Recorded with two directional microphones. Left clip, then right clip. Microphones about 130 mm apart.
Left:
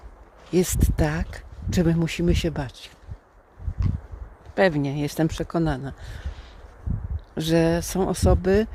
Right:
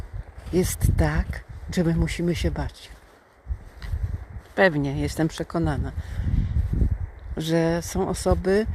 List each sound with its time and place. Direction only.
0.5 s speech: 45° left (ahead or behind)
4.5 s speech: 30° left (ahead or behind)